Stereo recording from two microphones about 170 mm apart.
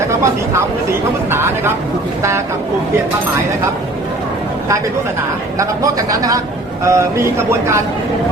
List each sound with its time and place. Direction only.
1.3 s speech: 15° right (ahead or behind)
5.5 s a man's voice: 20° right (ahead or behind)